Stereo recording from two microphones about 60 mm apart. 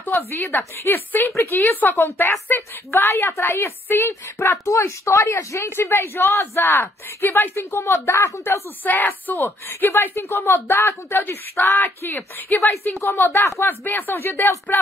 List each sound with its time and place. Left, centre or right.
0.1 s speech: left
1.3 s a woman's voice: left
1.7 s a woman's voice: left
8.8 s speech: left